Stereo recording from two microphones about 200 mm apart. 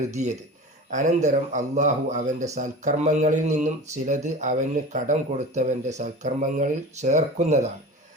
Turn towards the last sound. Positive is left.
turn(degrees=-35)  # may be behind; listen again after turning